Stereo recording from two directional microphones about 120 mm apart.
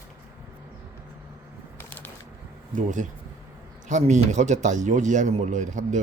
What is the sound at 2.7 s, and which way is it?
A man's voice, 90° right.